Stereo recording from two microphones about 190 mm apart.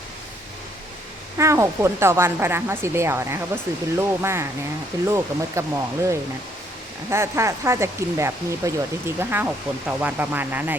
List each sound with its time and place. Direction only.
1.4 s speech: 15° right (ahead or behind)